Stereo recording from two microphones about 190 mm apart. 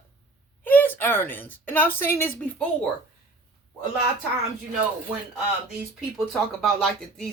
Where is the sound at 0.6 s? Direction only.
10° left (ahead or behind).